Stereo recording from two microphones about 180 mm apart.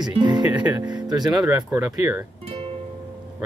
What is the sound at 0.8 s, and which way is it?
Speech, 25° right (ahead or behind).